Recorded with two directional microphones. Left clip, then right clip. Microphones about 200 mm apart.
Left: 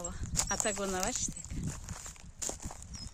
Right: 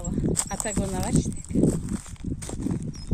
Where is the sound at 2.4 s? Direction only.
20° left (ahead or behind).